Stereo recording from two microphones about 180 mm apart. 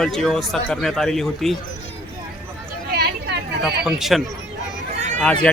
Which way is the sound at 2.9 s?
60° right (ahead or behind).